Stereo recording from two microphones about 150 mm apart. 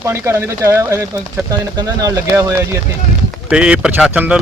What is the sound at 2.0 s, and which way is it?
Speech, 20° right (ahead or behind).